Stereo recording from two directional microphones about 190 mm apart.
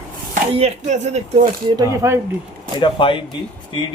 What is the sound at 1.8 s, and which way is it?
Speech, 15° right (ahead or behind).